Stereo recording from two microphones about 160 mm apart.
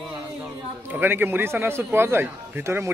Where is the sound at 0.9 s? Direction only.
10° right (ahead or behind).